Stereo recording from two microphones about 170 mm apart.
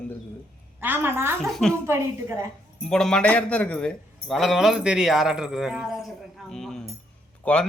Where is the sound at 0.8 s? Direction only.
10° right (ahead or behind).